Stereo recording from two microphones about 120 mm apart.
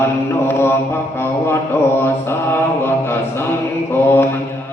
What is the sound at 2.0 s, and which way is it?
Mantra, 20° left (ahead or behind).